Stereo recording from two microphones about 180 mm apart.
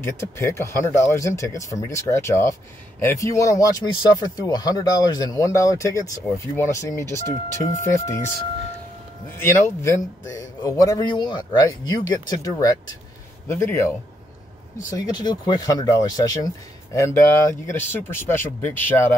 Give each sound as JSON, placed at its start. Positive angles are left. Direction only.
{"t": 0.0, "sound": "speech", "side_deg": 15}
{"t": 9.4, "sound": "speech", "side_deg": 15}
{"t": 15.0, "sound": "speech", "side_deg": 25}